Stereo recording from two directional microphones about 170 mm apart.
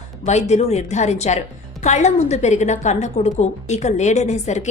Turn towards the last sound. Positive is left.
turn(degrees=45)  # may be behind; listen again after turning